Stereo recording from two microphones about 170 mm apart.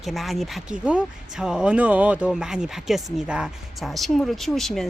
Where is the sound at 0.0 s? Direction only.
Centre (ahead or behind).